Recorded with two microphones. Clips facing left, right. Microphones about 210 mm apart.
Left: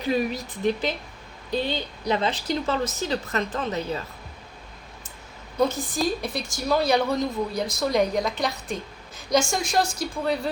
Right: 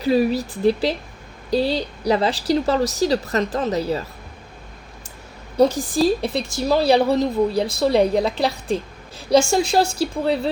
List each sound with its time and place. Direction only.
0.0 s a woman's voice: 35° right (ahead or behind)
5.9 s speech: 30° right (ahead or behind)